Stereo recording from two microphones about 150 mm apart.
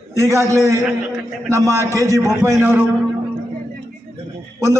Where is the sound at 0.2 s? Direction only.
20° right (ahead or behind).